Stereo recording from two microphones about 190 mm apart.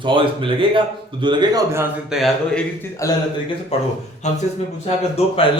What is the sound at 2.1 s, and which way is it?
Speech, centre (ahead or behind).